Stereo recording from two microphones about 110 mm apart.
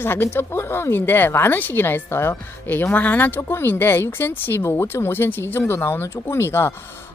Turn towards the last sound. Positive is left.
turn(degrees=20)  # may be behind; listen again after turning